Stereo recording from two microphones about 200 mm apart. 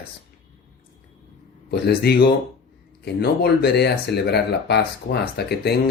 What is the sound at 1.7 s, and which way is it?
Speech, 55° left (ahead or behind).